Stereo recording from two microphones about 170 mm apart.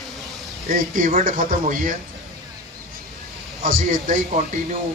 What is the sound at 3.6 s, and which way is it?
Speech, 55° right (ahead or behind).